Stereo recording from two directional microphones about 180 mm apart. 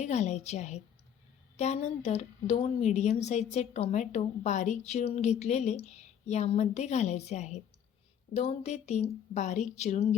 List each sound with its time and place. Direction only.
0.0 s a woman's voice: 40° left (ahead or behind)